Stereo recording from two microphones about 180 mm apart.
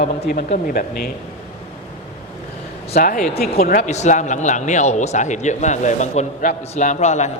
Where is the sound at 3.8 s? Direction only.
40° left (ahead or behind).